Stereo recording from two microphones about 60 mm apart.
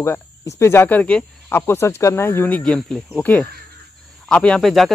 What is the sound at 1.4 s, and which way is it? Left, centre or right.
Speech, left.